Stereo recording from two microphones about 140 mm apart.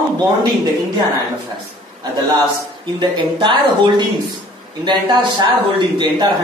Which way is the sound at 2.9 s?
35° right (ahead or behind).